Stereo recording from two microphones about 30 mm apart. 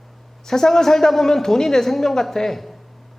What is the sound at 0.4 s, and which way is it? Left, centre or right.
A man's voice, centre.